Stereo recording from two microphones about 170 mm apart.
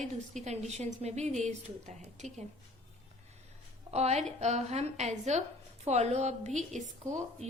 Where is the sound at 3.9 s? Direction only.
40° right (ahead or behind).